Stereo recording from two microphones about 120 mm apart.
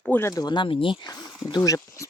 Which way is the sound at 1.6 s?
20° left (ahead or behind).